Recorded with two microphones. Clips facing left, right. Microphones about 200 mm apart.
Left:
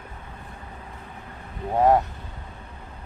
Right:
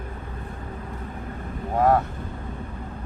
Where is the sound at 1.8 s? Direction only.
20° left (ahead or behind).